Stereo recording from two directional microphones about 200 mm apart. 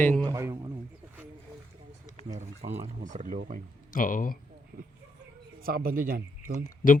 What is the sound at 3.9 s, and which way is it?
Speech, 40° left (ahead or behind).